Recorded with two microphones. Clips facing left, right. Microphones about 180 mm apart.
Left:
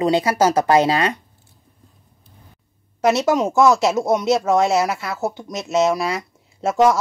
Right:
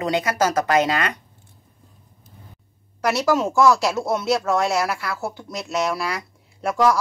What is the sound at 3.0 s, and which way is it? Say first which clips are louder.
Speech: left 3 dB; 25° left (ahead or behind).